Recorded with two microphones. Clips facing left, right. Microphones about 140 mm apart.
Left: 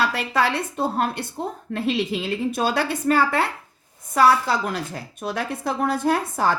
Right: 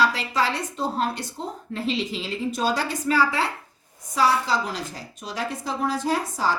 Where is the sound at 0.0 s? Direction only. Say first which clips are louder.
Left 1 dB; 55° left (ahead or behind).